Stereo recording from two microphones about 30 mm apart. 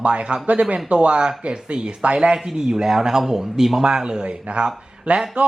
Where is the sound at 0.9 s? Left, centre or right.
Right.